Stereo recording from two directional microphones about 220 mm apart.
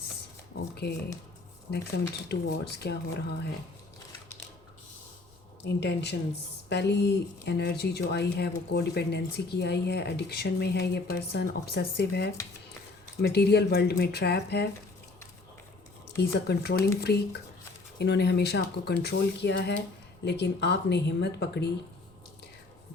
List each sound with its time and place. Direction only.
0.8 s speech: 50° left (ahead or behind)
2.3 s speech: 50° left (ahead or behind)
5.6 s speech: 50° left (ahead or behind)
16.1 s speech: 45° left (ahead or behind)